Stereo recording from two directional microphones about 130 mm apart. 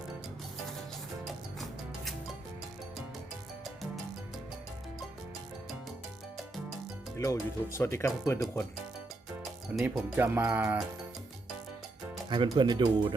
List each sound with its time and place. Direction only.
7.2 s speech: 25° left (ahead or behind)
9.8 s speech: 10° right (ahead or behind)
12.3 s speech: 35° right (ahead or behind)